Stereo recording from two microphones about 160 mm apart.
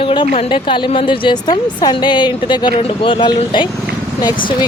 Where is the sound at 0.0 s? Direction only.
30° left (ahead or behind).